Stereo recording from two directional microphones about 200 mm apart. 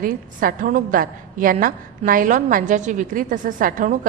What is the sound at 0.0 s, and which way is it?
A woman's voice, 45° right (ahead or behind).